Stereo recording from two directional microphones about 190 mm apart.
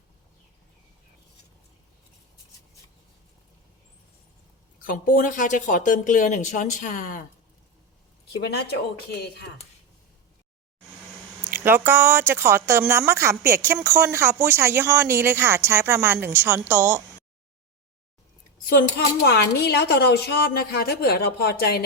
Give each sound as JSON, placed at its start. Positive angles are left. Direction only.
{"t": 4.8, "sound": "speech", "side_deg": 45}
{"t": 8.4, "sound": "a woman's voice", "side_deg": 60}
{"t": 11.5, "sound": "speech", "side_deg": -10}
{"t": 18.7, "sound": "a woman's voice", "side_deg": 55}